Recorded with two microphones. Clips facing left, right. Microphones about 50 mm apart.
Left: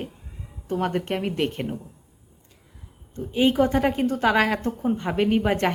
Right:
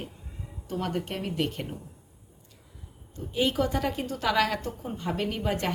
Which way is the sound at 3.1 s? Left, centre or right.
Left.